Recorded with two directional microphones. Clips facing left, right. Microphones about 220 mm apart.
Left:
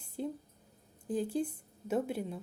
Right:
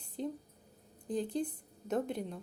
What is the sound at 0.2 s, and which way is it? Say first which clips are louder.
A woman's voice: left 1 dB; 5° left (ahead or behind).